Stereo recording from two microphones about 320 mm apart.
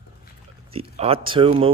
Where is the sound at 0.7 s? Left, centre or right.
Centre.